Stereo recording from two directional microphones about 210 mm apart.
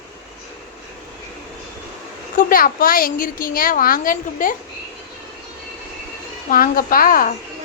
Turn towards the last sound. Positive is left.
turn(degrees=40)  # may be behind; listen again after turning